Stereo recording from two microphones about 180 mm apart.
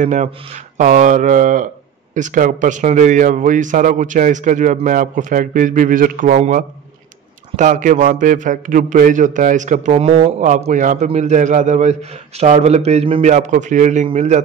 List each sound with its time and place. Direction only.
0.0 s a man's voice: 45° right (ahead or behind)